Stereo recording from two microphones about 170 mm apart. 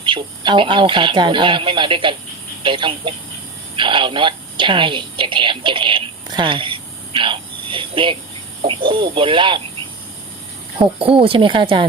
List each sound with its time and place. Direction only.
0.0 s a woman's voice: 30° right (ahead or behind)
10.8 s speech: 35° right (ahead or behind)